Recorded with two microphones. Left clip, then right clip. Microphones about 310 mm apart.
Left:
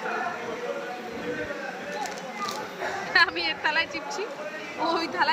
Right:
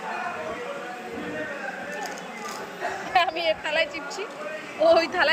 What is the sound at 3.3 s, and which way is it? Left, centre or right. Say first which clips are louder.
Speech: right 4 dB; left.